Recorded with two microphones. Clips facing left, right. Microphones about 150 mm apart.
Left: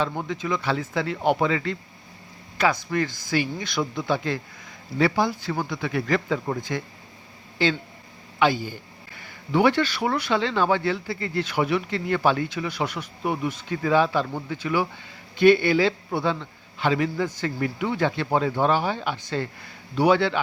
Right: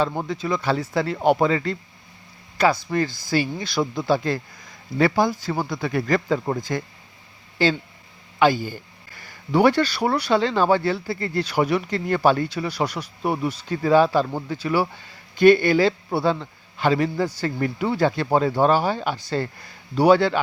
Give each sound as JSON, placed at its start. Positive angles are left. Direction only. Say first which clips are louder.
{"t": 0.0, "sound": "speech", "louder": "right 3 dB", "side_deg": -35}
{"t": 8.4, "sound": "speech", "louder": "right 3 dB", "side_deg": -45}